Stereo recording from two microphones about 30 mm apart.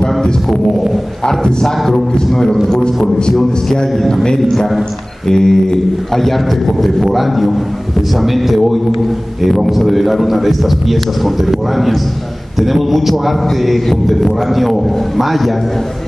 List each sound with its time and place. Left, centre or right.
1.2 s a man's voice: left; by 13.7 s centre
13.8 s music: centre
14.5 s a man's voice: centre